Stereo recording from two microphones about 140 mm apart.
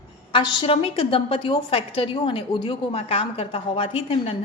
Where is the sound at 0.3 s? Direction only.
40° left (ahead or behind).